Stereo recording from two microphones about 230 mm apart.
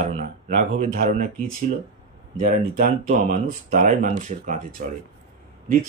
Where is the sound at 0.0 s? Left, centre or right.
Right.